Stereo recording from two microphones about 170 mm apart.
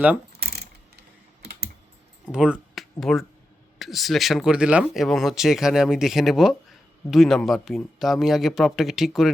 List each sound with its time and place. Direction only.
0.3 s mechanisms: 70° right (ahead or behind)
1.4 s computer keyboard: 75° right (ahead or behind)
2.3 s speech: 5° right (ahead or behind)